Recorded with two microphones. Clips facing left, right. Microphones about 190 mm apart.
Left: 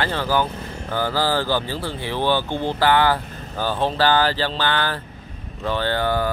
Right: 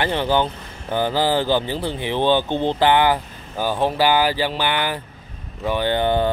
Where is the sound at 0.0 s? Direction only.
20° right (ahead or behind).